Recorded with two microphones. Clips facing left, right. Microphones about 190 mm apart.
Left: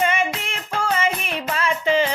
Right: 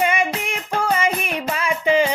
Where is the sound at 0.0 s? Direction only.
15° right (ahead or behind).